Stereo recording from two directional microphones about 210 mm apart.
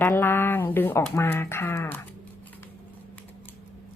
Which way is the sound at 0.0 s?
10° left (ahead or behind).